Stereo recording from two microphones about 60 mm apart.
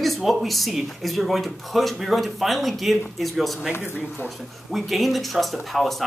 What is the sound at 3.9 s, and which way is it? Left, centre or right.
Speech, left.